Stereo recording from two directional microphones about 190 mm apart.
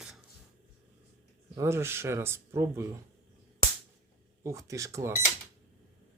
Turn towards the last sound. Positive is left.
turn(degrees=-15)  # may be behind; listen again after turning